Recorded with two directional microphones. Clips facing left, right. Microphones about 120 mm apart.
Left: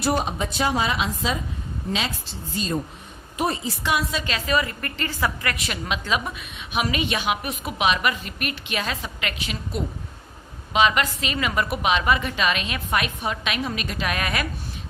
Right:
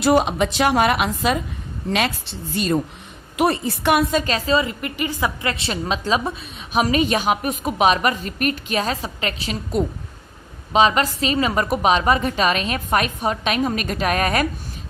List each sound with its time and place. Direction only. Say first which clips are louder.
0.0 s a woman's voice: right 7 dB; 90° right; by 4.2 s 60° right (ahead or behind)
4.2 s a woman's voice: right 4 dB; 40° right (ahead or behind)